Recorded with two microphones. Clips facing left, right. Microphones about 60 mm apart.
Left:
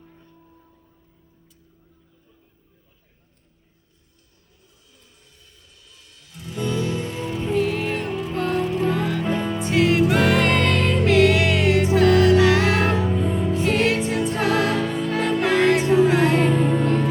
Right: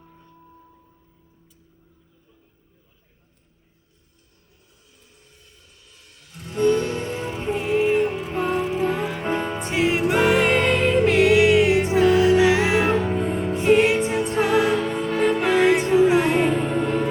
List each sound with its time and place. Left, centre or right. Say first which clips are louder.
6.1 s music: right 5 dB; right
7.5 s music: right 3 dB; centre
9.3 s music: even; right
9.6 s music: left 3 dB; centre
13.1 s music: even; right
13.6 s music: right 5 dB; centre
14.8 s music: even; right
15.2 s music: right 1 dB; centre
16.0 s music: even; centre
16.6 s music: left 2 dB; centre